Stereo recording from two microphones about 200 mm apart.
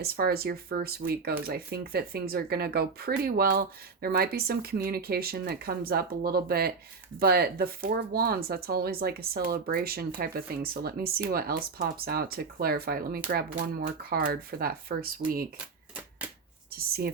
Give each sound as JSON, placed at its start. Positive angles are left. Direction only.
{"t": 0.0, "sound": "speech", "side_deg": -50}
{"t": 15.5, "sound": "typewriter", "side_deg": -5}
{"t": 16.7, "sound": "speech", "side_deg": -50}